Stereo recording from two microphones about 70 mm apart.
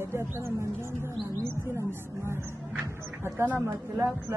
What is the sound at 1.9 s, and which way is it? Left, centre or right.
Speech, right.